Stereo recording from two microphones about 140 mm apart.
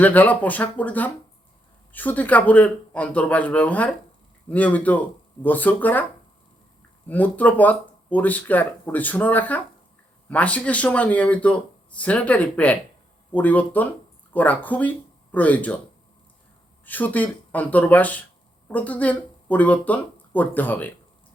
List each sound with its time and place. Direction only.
0.0 s speech: 10° left (ahead or behind)
7.1 s speech: 10° left (ahead or behind)
16.8 s speech: 10° left (ahead or behind)